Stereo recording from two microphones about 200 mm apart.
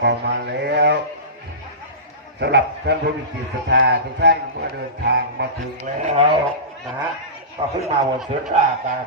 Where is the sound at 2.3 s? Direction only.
55° right (ahead or behind).